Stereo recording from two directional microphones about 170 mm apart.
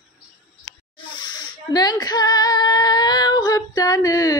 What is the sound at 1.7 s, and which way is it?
Female singing, 25° left (ahead or behind).